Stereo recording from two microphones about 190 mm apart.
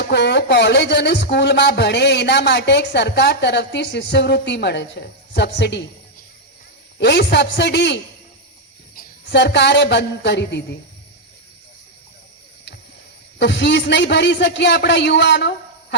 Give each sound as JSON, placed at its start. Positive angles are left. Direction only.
{"t": 0.0, "sound": "speech", "side_deg": 65}
{"t": 7.0, "sound": "speech", "side_deg": 65}
{"t": 9.0, "sound": "speech", "side_deg": 65}
{"t": 13.4, "sound": "speech", "side_deg": 70}